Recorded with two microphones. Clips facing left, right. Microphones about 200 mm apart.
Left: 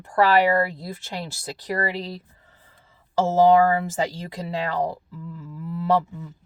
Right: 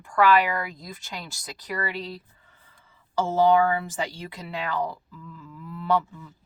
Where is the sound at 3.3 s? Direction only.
35° left (ahead or behind).